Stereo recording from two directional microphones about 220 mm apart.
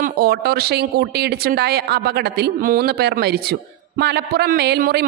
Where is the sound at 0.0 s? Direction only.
45° right (ahead or behind).